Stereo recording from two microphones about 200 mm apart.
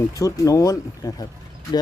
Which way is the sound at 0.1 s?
15° left (ahead or behind).